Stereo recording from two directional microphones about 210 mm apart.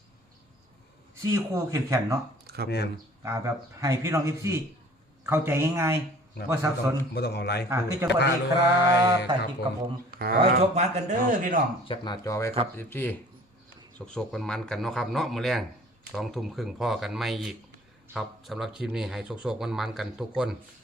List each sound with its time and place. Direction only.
1.3 s a man's voice: 15° right (ahead or behind)
2.6 s a man's voice: 50° left (ahead or behind)
3.2 s a man's voice: 10° right (ahead or behind)
7.1 s a man's voice: 50° left (ahead or behind)
7.7 s a man's voice: 10° right (ahead or behind)
8.2 s a sound: 55° left (ahead or behind)
9.0 s a man's voice: 15° right (ahead or behind)
10.1 s a sound: 45° right (ahead or behind)
10.8 s speech: 35° right (ahead or behind)
11.9 s a man's voice: 20° left (ahead or behind); by 20.6 s 5° right (ahead or behind)